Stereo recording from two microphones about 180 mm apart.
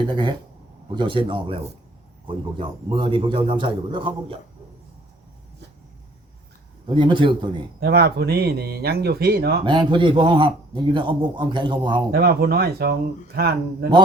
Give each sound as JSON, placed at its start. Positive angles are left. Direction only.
{"t": 0.1, "sound": "a man's voice", "side_deg": -25}
{"t": 6.8, "sound": "a man's voice", "side_deg": -25}
{"t": 7.8, "sound": "speech", "side_deg": -60}
{"t": 9.6, "sound": "a man's voice", "side_deg": -25}
{"t": 12.1, "sound": "speech", "side_deg": -60}